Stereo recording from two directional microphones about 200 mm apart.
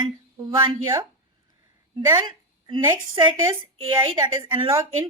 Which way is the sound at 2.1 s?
20° right (ahead or behind).